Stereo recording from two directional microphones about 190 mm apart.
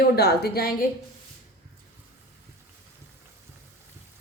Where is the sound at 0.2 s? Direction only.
55° left (ahead or behind).